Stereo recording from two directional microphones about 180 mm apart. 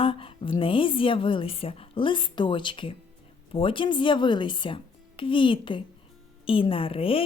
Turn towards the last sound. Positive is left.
turn(degrees=30)  # may be behind; listen again after turning